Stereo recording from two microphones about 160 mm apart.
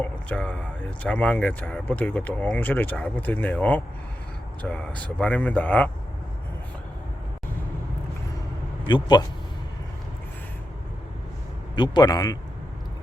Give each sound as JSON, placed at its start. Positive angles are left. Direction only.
{"t": 0.0, "sound": "speech", "side_deg": 10}
{"t": 8.9, "sound": "a man's voice", "side_deg": 30}
{"t": 11.8, "sound": "a man's voice", "side_deg": 25}